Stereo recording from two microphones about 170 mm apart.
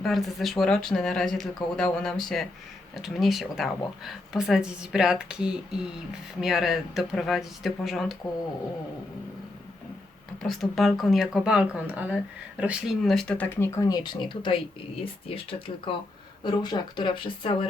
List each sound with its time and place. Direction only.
0.0 s speech: centre (ahead or behind)
10.4 s speech: centre (ahead or behind); by 17.7 s 30° left (ahead or behind)